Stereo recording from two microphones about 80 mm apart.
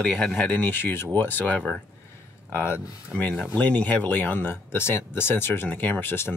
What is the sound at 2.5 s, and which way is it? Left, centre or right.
Speech, left.